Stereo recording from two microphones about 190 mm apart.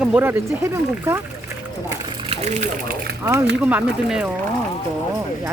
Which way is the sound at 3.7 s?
5° right (ahead or behind).